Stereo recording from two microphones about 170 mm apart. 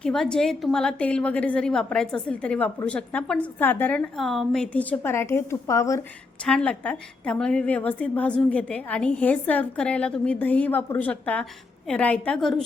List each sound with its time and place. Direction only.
0.0 s a woman's voice: 5° left (ahead or behind)
6.4 s a woman's voice: 5° left (ahead or behind)